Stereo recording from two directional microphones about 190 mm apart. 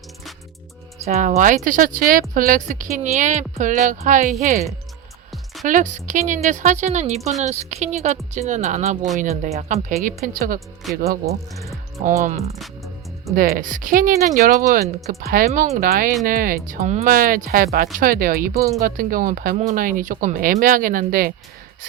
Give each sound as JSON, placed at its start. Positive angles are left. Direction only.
{"t": 1.0, "sound": "a woman's voice", "side_deg": -35}
{"t": 5.6, "sound": "a woman's voice", "side_deg": -40}
{"t": 10.8, "sound": "speech", "side_deg": 0}
{"t": 12.2, "sound": "a woman's voice", "side_deg": -40}
{"t": 18.5, "sound": "speech", "side_deg": -15}
{"t": 18.8, "sound": "speech", "side_deg": -45}